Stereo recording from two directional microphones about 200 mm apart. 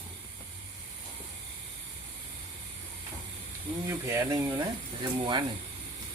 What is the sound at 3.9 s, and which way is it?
Speech, 15° right (ahead or behind).